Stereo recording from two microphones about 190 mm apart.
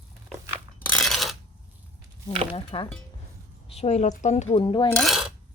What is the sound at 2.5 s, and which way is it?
Speech, 30° left (ahead or behind).